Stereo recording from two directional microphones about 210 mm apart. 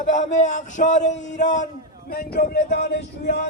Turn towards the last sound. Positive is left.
turn(degrees=50)  # may be behind; listen again after turning